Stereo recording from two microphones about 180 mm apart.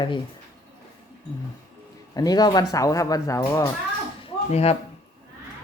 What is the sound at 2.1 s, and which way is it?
Speech, 20° left (ahead or behind).